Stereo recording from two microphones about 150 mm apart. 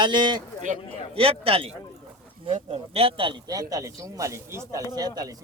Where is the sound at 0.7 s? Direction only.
55° right (ahead or behind).